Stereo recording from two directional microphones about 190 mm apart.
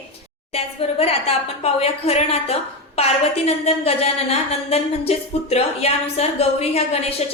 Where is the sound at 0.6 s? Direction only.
30° left (ahead or behind).